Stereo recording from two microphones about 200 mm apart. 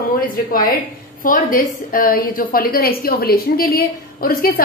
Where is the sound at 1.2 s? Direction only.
45° left (ahead or behind).